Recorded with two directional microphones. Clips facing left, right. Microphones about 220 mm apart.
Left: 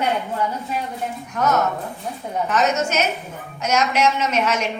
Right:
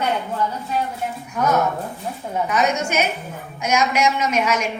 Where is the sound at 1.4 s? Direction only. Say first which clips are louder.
Right 1 dB; 10° right (ahead or behind).